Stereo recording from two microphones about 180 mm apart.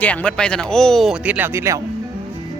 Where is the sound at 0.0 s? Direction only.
10° left (ahead or behind); by 1.8 s 15° right (ahead or behind).